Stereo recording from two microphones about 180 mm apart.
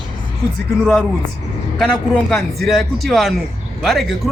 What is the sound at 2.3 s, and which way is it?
Speech, centre (ahead or behind).